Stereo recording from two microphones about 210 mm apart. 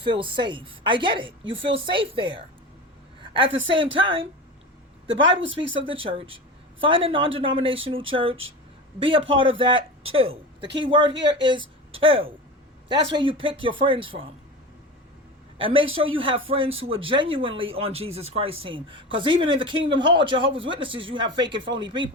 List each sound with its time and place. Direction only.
0.0 s speech: 25° right (ahead or behind)
3.2 s a sound: 25° right (ahead or behind)
3.9 s a woman's voice: 25° right (ahead or behind)
11.1 s speech: 55° right (ahead or behind)
11.9 s speech: 25° right (ahead or behind)
15.5 s a woman's voice: 25° right (ahead or behind)